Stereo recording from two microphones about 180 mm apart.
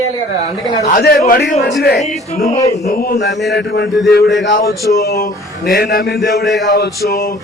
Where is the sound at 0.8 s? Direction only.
50° left (ahead or behind).